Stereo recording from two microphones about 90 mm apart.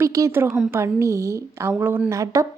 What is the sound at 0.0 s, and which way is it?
Speech, 35° right (ahead or behind).